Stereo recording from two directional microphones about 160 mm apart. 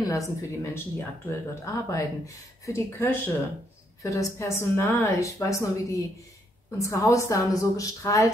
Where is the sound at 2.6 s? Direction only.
20° left (ahead or behind).